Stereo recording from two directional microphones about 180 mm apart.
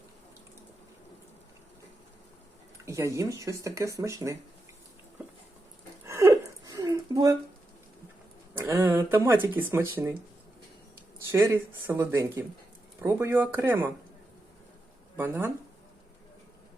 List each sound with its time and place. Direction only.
2.8 s speech: 15° right (ahead or behind)
6.1 s a sound: 15° right (ahead or behind)
8.5 s speech: 15° right (ahead or behind)
11.3 s speech: 10° right (ahead or behind)
15.1 s speech: 10° right (ahead or behind)